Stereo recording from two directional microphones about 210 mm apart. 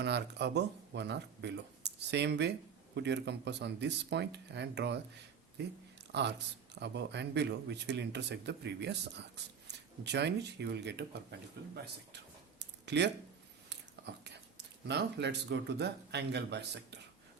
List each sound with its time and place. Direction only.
0.0 s speech: 55° right (ahead or behind)
6.1 s speech: 55° right (ahead or behind)
14.1 s speech: 55° right (ahead or behind)